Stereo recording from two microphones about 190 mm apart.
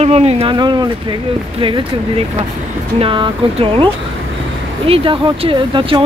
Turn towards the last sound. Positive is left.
turn(degrees=-30)  # may be behind; listen again after turning